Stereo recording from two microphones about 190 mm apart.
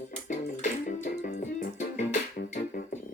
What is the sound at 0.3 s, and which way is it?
Music, 40° left (ahead or behind).